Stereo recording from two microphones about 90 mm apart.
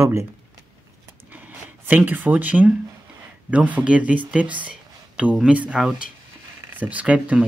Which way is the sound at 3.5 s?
15° right (ahead or behind).